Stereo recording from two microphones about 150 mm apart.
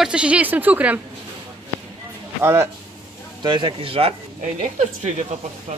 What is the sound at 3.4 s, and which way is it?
Speech, 30° right (ahead or behind).